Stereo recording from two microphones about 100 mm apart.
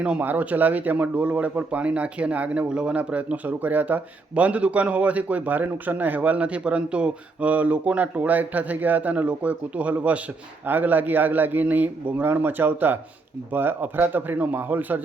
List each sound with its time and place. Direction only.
0.0 s a man's voice: 15° right (ahead or behind)